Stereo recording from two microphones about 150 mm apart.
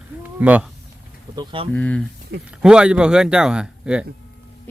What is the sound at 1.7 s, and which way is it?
Speech, 10° left (ahead or behind).